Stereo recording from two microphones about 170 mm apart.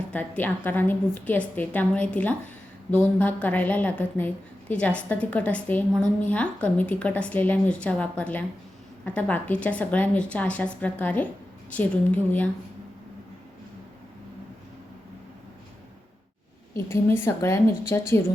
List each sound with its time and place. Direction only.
0.1 s a woman's voice: 10° left (ahead or behind)
16.7 s a woman's voice: 15° left (ahead or behind)